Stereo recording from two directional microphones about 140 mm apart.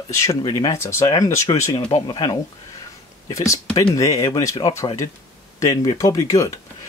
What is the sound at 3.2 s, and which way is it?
Speech, 25° left (ahead or behind).